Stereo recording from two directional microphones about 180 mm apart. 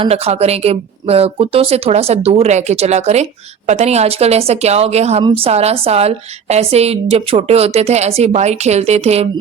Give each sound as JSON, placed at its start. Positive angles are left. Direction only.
{"t": 0.0, "sound": "a woman's voice", "side_deg": -35}